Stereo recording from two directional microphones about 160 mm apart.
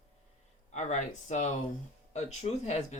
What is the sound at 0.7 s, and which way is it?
Speech, 45° left (ahead or behind).